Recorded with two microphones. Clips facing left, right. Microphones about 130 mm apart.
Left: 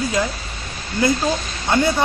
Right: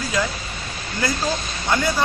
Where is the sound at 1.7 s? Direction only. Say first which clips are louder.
Left 3 dB; 20° left (ahead or behind).